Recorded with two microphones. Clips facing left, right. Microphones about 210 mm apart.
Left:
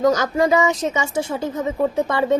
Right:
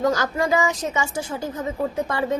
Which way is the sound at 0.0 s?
20° left (ahead or behind).